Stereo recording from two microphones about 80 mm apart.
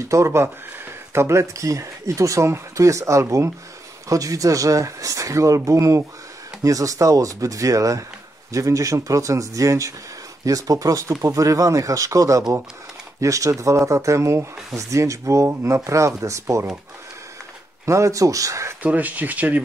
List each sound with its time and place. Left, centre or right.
0.0 s speech: right
17.8 s speech: right
18.8 s speech: right